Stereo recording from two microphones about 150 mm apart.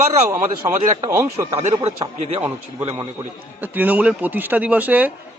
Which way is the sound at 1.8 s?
45° right (ahead or behind).